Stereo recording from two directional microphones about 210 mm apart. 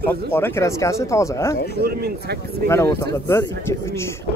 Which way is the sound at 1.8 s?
50° right (ahead or behind).